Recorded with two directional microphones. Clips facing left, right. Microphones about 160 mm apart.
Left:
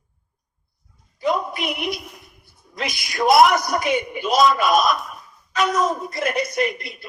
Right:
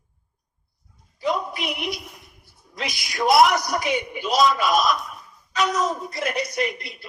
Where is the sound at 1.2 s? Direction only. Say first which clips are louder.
Left 3 dB; 50° left (ahead or behind).